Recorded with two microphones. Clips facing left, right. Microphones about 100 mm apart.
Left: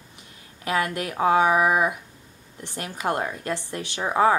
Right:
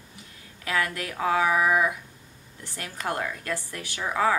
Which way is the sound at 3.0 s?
25° left (ahead or behind).